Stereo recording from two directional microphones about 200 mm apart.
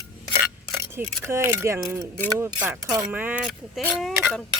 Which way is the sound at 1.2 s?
15° right (ahead or behind).